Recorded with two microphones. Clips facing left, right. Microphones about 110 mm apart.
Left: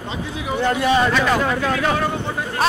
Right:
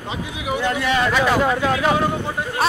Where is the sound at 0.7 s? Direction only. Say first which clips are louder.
Left 5 dB; 30° left (ahead or behind).